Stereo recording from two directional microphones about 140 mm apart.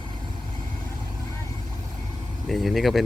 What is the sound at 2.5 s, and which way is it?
Speech, centre (ahead or behind).